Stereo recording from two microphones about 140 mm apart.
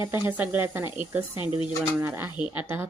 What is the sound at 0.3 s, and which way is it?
Speech, 15° right (ahead or behind).